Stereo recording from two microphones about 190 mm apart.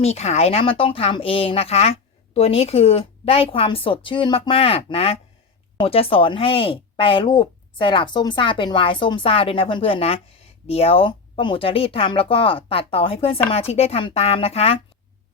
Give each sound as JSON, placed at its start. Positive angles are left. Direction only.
{"t": 0.0, "sound": "speech", "side_deg": 35}